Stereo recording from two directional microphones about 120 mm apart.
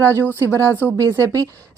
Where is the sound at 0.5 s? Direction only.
25° right (ahead or behind).